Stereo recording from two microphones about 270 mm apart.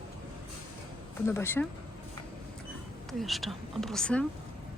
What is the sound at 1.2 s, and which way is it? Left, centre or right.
Speech, centre.